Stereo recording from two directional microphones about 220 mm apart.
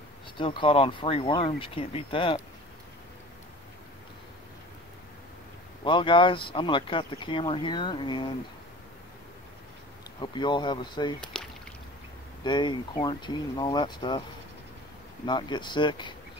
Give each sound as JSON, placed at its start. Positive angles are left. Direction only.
{"t": 0.4, "sound": "speech", "side_deg": 20}
{"t": 5.9, "sound": "speech", "side_deg": 20}
{"t": 10.2, "sound": "speech", "side_deg": 20}
{"t": 12.4, "sound": "speech", "side_deg": 20}
{"t": 15.2, "sound": "speech", "side_deg": 20}